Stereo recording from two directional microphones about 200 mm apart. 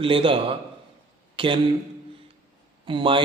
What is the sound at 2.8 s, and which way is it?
Speech, 25° right (ahead or behind).